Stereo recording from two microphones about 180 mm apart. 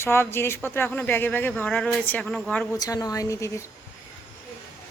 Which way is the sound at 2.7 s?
20° left (ahead or behind).